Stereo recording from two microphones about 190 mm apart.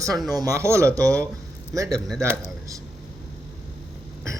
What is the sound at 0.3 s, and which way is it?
Speech, 20° right (ahead or behind).